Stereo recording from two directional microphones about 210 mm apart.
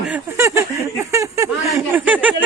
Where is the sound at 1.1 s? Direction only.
15° right (ahead or behind).